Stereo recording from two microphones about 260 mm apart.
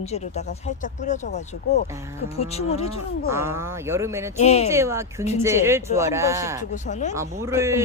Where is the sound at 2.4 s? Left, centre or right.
Left.